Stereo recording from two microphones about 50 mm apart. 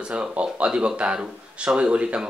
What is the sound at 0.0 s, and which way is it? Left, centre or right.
Speech, right.